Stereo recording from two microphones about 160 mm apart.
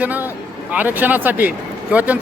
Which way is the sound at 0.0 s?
10° right (ahead or behind).